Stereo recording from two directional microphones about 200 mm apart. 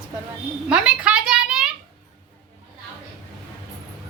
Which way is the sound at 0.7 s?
5° right (ahead or behind).